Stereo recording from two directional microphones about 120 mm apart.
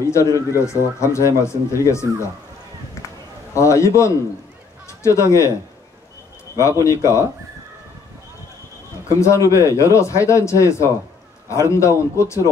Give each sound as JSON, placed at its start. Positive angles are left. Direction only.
{"t": 0.0, "sound": "speech", "side_deg": 25}
{"t": 3.5, "sound": "a man's voice", "side_deg": 25}
{"t": 6.6, "sound": "speech", "side_deg": 25}
{"t": 9.2, "sound": "speech", "side_deg": 25}